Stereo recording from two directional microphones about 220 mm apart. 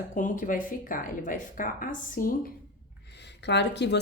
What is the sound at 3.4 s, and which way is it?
Speech, 50° left (ahead or behind).